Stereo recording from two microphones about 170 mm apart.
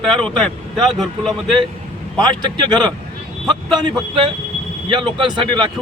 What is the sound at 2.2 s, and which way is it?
Speech, 25° right (ahead or behind).